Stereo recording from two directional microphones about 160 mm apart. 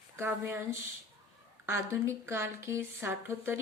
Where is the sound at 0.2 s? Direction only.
15° right (ahead or behind).